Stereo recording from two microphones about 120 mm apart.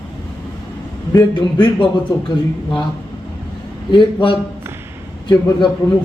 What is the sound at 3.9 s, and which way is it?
A man's voice, 40° left (ahead or behind).